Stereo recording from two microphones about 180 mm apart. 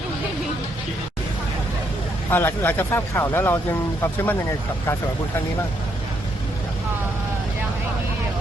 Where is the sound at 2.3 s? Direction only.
10° left (ahead or behind).